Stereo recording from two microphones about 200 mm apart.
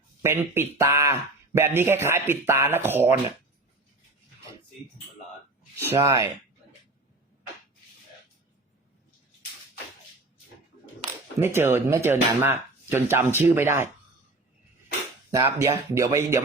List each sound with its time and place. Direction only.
0.2 s speech: 10° right (ahead or behind)
5.9 s speech: 15° right (ahead or behind)
11.3 s speech: 10° right (ahead or behind)
15.3 s speech: 15° right (ahead or behind)